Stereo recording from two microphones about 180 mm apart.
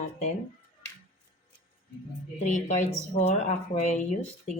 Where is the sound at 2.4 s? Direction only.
40° left (ahead or behind).